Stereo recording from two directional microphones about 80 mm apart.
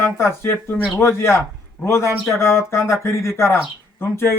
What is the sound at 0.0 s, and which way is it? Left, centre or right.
Speech, left.